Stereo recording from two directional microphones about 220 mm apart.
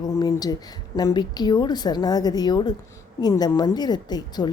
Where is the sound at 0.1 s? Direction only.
15° left (ahead or behind).